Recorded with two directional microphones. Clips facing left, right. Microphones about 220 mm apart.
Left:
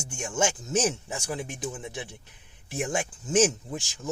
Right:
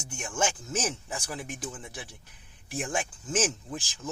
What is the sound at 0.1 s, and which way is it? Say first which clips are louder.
Speech: left 3 dB; 25° left (ahead or behind).